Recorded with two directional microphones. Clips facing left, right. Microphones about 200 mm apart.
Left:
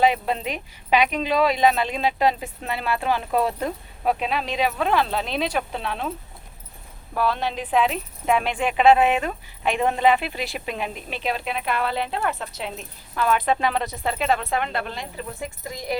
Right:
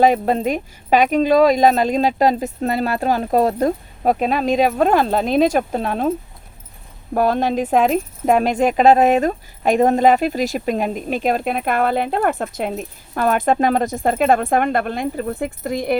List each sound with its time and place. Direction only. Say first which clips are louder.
0.0 s speech: right 6 dB; 45° right (ahead or behind)